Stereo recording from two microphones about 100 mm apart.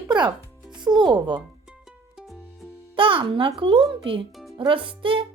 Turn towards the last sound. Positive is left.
turn(degrees=-60)  # may be behind; listen again after turning